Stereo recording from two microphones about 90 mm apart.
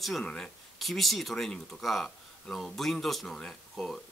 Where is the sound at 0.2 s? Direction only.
5° left (ahead or behind).